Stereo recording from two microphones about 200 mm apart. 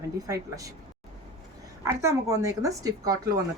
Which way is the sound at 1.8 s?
15° right (ahead or behind).